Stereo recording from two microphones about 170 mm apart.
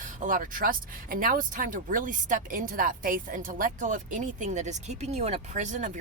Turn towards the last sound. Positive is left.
turn(degrees=-45)  # may be behind; listen again after turning